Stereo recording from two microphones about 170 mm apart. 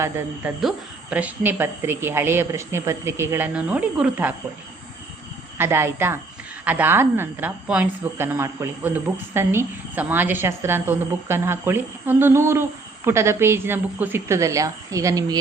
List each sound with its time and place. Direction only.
0.0 s a woman's voice: 15° right (ahead or behind)
5.5 s a woman's voice: 15° right (ahead or behind)